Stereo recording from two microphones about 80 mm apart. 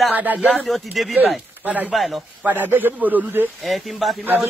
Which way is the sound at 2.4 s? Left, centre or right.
Right.